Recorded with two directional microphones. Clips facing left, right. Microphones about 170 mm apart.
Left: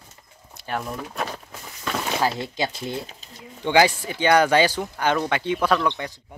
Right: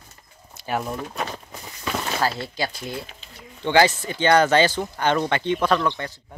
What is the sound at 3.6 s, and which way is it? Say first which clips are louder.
Speech: even; 10° left (ahead or behind).